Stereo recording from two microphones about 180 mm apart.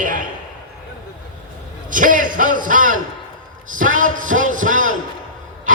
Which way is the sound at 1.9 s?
50° right (ahead or behind).